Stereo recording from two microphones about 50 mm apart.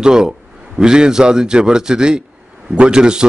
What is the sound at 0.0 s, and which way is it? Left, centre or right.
A man's voice, centre.